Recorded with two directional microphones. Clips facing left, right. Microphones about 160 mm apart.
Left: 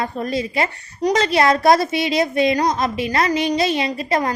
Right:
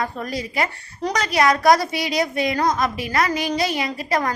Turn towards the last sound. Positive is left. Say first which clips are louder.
# left 2 dB
turn(degrees=25)  # may be behind; listen again after turning